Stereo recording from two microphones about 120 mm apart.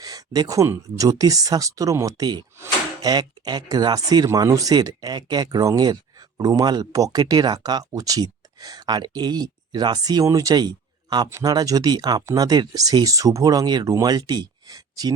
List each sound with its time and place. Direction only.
0.0 s speech: 30° right (ahead or behind)